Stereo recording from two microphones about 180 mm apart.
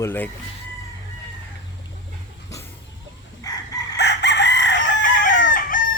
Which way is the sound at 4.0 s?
70° left (ahead or behind).